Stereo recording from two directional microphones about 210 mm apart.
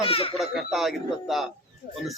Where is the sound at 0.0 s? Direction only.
25° left (ahead or behind).